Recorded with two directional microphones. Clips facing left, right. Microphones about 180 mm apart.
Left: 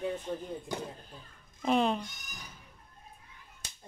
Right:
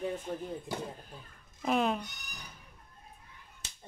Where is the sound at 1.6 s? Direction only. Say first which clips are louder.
Left 2 dB; 5° right (ahead or behind).